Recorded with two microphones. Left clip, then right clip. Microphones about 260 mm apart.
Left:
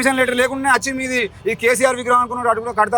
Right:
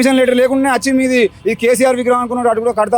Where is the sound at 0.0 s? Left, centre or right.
Right.